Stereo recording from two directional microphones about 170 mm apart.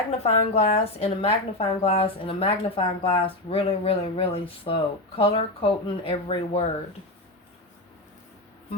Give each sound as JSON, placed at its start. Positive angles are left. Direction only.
{"t": 0.2, "sound": "speech", "side_deg": 40}